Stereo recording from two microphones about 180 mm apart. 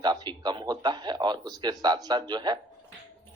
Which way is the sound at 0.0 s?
25° right (ahead or behind).